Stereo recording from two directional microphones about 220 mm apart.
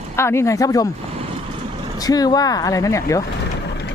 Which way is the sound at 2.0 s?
15° left (ahead or behind).